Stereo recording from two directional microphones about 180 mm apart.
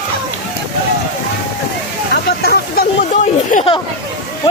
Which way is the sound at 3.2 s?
45° left (ahead or behind).